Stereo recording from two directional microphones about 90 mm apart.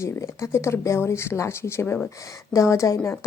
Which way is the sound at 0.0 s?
35° left (ahead or behind).